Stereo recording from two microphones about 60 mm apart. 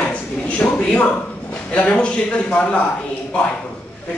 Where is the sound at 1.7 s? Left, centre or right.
Left.